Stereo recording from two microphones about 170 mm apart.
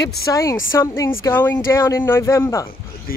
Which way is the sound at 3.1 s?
60° left (ahead or behind).